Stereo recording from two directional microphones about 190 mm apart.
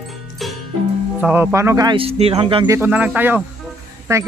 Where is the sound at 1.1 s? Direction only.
10° right (ahead or behind); by 2.6 s 30° right (ahead or behind).